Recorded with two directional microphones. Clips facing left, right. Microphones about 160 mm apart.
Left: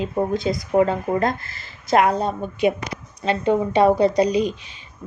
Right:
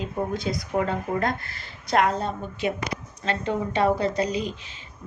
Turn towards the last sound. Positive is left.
turn(degrees=15)  # may be behind; listen again after turning